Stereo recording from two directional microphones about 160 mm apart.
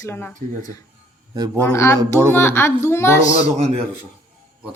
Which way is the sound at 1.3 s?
25° right (ahead or behind).